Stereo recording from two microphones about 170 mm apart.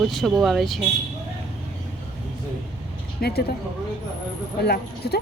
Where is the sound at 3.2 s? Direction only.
65° left (ahead or behind).